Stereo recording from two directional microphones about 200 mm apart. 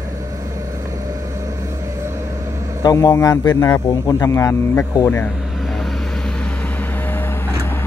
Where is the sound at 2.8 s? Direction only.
20° left (ahead or behind).